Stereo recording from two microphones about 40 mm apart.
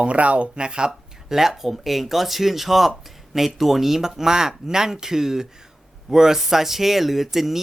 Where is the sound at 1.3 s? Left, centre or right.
Centre.